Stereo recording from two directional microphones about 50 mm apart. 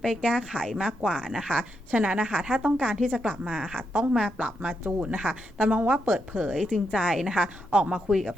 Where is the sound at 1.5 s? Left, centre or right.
Right; by 3.8 s centre.